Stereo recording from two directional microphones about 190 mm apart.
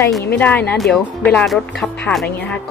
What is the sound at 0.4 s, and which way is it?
Speech, 10° left (ahead or behind).